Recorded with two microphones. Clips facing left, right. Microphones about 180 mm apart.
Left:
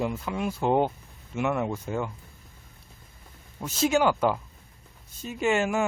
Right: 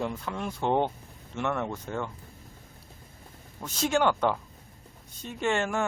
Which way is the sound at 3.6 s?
5° left (ahead or behind).